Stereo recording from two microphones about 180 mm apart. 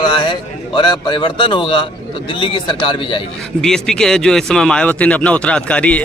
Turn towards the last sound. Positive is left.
turn(degrees=5)  # may be behind; listen again after turning